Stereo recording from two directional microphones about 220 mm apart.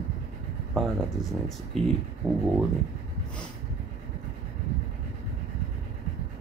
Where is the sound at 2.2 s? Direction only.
15° right (ahead or behind).